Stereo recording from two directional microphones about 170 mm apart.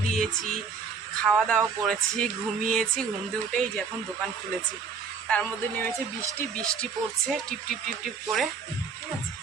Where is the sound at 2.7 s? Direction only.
5° left (ahead or behind).